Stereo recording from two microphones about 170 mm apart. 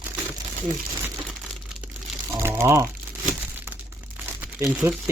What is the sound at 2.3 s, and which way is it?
Speech, 15° right (ahead or behind).